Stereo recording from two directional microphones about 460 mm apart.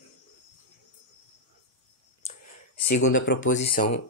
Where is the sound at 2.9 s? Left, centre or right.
Left.